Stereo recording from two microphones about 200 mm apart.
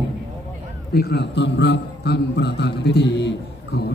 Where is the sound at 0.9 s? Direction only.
55° left (ahead or behind).